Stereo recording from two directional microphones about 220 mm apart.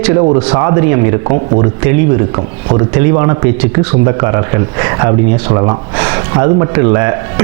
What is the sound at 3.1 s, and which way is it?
A man's voice, 20° right (ahead or behind).